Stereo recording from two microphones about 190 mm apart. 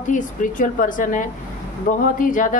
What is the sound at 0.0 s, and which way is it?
A woman's voice, 45° left (ahead or behind).